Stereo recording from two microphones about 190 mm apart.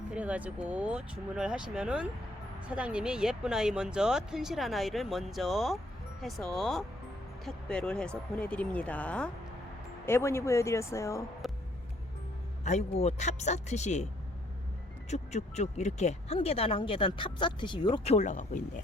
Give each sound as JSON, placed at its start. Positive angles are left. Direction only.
{"t": 0.1, "sound": "a woman's voice", "side_deg": -5}
{"t": 12.6, "sound": "speech", "side_deg": 35}
{"t": 15.1, "sound": "speech", "side_deg": 35}